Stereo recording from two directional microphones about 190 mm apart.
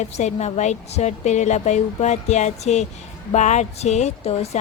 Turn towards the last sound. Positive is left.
turn(degrees=35)  # may be behind; listen again after turning